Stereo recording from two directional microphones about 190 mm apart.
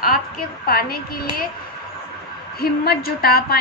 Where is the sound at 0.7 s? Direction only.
50° left (ahead or behind).